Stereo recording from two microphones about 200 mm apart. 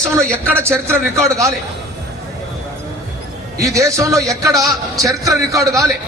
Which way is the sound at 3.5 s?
15° right (ahead or behind).